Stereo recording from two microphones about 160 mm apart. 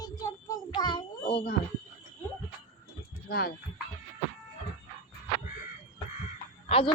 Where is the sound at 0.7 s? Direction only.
30° left (ahead or behind).